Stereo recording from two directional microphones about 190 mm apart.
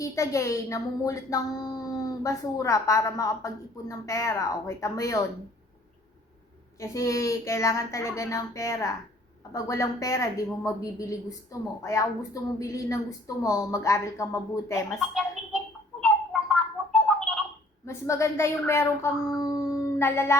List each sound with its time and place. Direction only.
0.0 s a woman's voice: 15° left (ahead or behind)
6.7 s a woman's voice: 15° left (ahead or behind)
16.0 s bird: 5° left (ahead or behind)
17.8 s a woman's voice: 15° left (ahead or behind)